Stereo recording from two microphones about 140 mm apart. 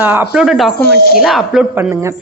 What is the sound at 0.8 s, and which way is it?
Speech, 90° left.